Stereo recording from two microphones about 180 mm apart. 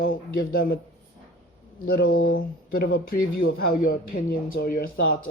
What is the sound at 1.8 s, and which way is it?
Speech, 55° left (ahead or behind).